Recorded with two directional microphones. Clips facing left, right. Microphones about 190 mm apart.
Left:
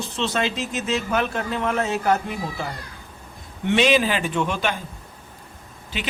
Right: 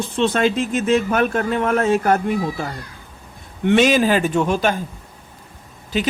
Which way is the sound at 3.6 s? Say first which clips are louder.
Right 4 dB; 45° right (ahead or behind).